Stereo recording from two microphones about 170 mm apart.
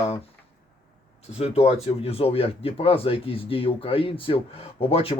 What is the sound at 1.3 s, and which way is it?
Speech, 40° left (ahead or behind).